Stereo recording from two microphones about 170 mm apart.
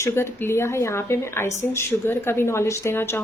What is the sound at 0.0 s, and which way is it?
Speech, 15° left (ahead or behind).